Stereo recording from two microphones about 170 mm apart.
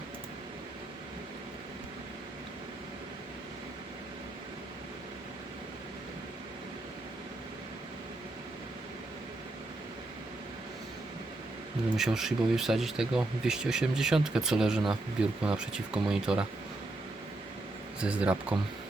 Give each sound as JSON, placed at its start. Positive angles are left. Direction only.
{"t": 11.9, "sound": "speech", "side_deg": 0}
{"t": 18.0, "sound": "speech", "side_deg": -5}